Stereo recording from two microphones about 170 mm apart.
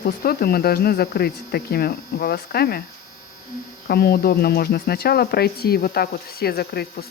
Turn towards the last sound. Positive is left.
turn(degrees=65)  # may be behind; listen again after turning